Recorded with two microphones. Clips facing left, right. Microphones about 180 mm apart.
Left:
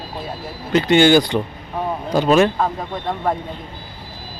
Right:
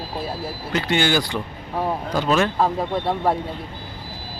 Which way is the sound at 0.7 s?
20° left (ahead or behind).